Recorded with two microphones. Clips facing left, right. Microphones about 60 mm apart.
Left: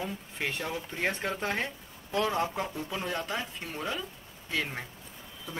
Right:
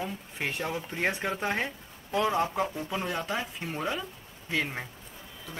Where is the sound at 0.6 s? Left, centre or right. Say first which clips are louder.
Right 4 dB; right.